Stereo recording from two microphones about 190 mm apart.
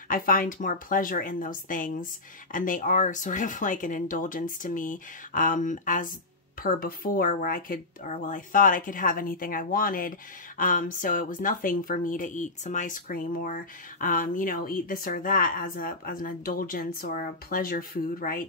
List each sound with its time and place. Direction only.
0.1 s speech: 45° left (ahead or behind)